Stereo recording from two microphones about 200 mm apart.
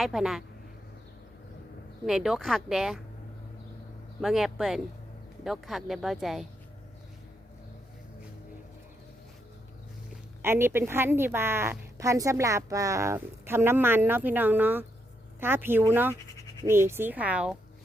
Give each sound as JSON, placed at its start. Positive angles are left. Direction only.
{"t": 0.0, "sound": "speech", "side_deg": 0}
{"t": 2.0, "sound": "speech", "side_deg": 0}
{"t": 4.2, "sound": "speech", "side_deg": 0}
{"t": 10.4, "sound": "a woman's voice", "side_deg": -10}